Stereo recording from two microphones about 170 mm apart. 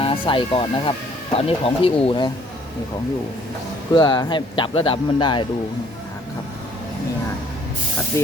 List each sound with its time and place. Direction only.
0.0 s speech: 30° left (ahead or behind)
3.9 s speech: 25° left (ahead or behind)
8.1 s speech: 15° left (ahead or behind)